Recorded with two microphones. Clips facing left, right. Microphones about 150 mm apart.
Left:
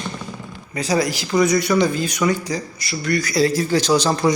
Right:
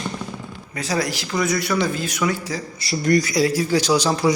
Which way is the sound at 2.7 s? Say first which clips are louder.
Right 6 dB; 35° right (ahead or behind).